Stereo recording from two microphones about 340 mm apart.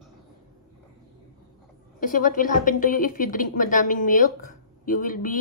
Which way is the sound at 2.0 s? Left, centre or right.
Left.